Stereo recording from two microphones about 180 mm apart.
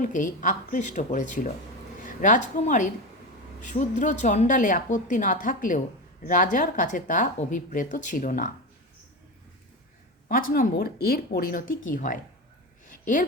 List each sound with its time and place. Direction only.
0.0 s a woman's voice: 45° left (ahead or behind)
10.2 s speech: 50° left (ahead or behind)
12.9 s a sound: 45° left (ahead or behind)